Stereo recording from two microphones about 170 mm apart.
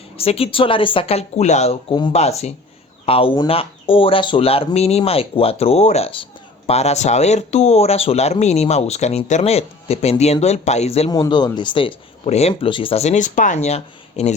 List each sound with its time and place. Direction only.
0.2 s speech: 35° left (ahead or behind)
11.1 s speech: 25° left (ahead or behind)